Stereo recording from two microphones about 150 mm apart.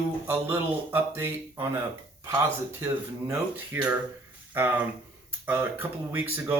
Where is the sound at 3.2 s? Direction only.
10° right (ahead or behind).